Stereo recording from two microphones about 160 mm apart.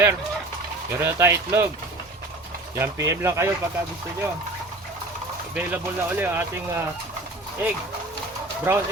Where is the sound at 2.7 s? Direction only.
20° right (ahead or behind).